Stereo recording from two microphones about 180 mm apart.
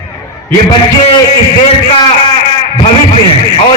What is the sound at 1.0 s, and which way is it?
Speech, 30° left (ahead or behind).